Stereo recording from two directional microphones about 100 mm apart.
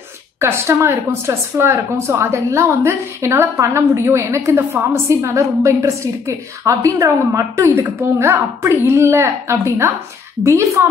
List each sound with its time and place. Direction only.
0.4 s speech: 25° right (ahead or behind)